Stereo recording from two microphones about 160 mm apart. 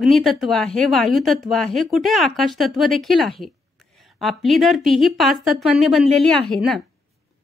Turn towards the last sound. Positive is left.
turn(degrees=5)  # may be behind; listen again after turning